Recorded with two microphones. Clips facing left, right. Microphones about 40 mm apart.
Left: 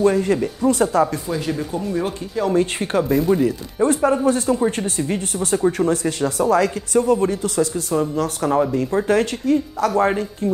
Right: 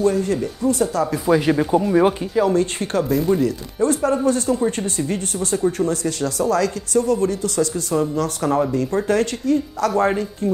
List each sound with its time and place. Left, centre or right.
0.0 s speech: left
1.3 s speech: right
2.5 s speech: centre
7.7 s speech: centre